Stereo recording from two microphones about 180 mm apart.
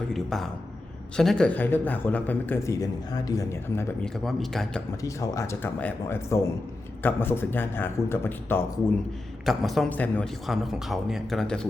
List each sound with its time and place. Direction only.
0.1 s a sound: centre (ahead or behind)
1.1 s a man's voice: 5° left (ahead or behind); by 3.8 s 20° left (ahead or behind)
4.0 s a man's voice: centre (ahead or behind)
5.0 s a man's voice: 15° left (ahead or behind)
9.5 s a man's voice: centre (ahead or behind)